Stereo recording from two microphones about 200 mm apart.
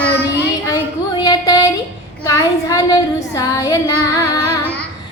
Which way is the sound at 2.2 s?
20° left (ahead or behind).